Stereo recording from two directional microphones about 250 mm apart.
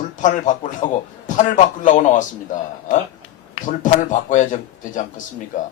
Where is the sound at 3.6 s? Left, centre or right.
Left.